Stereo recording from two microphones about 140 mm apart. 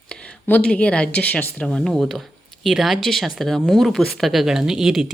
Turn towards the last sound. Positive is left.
turn(degrees=0)  # may be behind; listen again after turning